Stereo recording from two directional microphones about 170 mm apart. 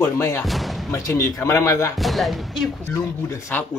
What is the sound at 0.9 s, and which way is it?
Speech, 20° left (ahead or behind).